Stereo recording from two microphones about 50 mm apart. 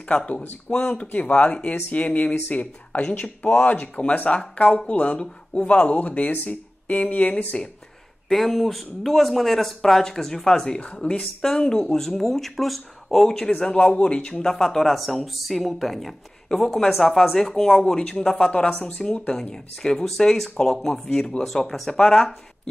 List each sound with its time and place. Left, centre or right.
0.0 s speech: left
5.2 s speech: centre
5.7 s speech: left
8.3 s speech: centre
10.8 s speech: left; by 13.5 s centre
13.5 s speech: centre
19.5 s speech: centre